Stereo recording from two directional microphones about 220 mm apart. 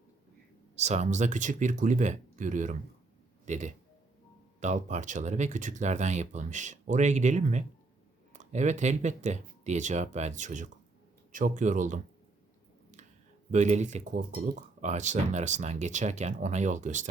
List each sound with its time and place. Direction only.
0.8 s speech: 30° right (ahead or behind)
13.5 s speech: 30° right (ahead or behind)